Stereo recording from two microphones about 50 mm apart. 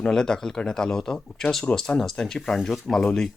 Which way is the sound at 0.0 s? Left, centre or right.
Centre.